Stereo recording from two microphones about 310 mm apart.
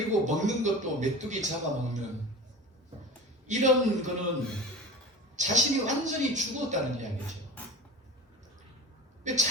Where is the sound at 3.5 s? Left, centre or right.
Right.